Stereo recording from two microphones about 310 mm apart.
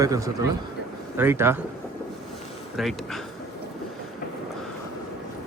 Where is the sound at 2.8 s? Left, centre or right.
Centre.